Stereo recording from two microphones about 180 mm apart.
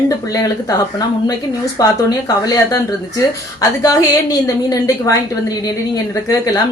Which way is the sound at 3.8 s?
20° left (ahead or behind).